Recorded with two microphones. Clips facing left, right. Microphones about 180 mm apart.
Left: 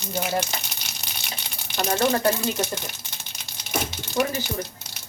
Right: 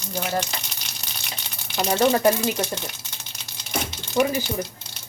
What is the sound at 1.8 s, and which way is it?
Speech, 15° right (ahead or behind).